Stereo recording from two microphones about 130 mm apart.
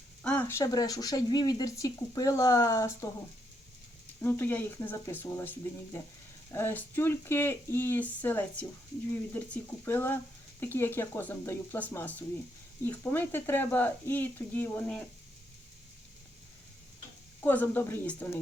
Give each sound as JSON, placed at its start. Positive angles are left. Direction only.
{"t": 0.2, "sound": "speech", "side_deg": 10}
{"t": 4.2, "sound": "speech", "side_deg": 15}
{"t": 17.4, "sound": "speech", "side_deg": 15}